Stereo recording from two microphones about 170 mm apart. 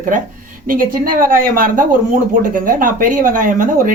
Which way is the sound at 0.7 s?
55° right (ahead or behind).